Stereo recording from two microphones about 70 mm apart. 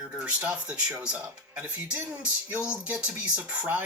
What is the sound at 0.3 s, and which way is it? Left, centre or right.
Speech, centre.